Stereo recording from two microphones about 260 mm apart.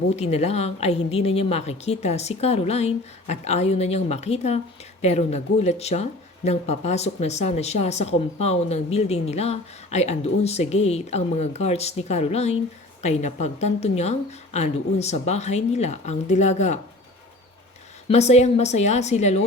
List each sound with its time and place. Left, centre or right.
0.2 s a woman's voice: left
18.1 s a woman's voice: left